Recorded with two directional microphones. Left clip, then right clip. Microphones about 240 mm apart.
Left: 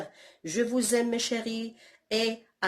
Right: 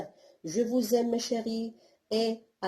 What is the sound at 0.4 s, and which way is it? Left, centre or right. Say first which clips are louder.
Speech: left 1 dB; left.